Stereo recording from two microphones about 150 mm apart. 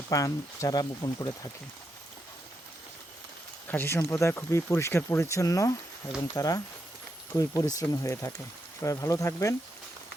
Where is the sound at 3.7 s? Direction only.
15° left (ahead or behind).